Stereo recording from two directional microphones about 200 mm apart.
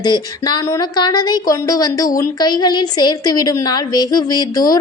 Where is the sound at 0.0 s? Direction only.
20° left (ahead or behind).